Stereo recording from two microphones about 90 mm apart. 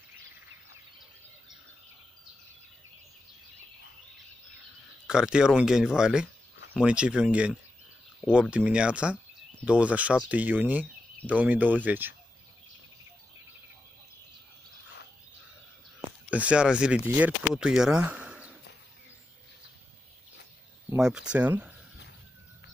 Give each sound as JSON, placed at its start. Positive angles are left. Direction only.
{"t": 5.0, "sound": "speech", "side_deg": -10}
{"t": 16.3, "sound": "speech", "side_deg": -15}
{"t": 21.0, "sound": "speech", "side_deg": -10}